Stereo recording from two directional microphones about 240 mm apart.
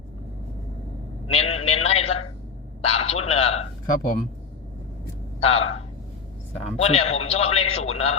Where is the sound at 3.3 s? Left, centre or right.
Left.